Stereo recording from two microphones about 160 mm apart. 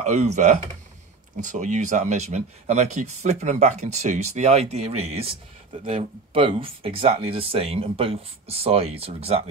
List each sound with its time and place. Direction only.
0.0 s speech: 45° right (ahead or behind)